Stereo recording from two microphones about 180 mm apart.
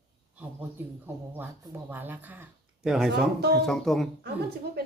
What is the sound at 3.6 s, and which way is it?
Speech, centre (ahead or behind).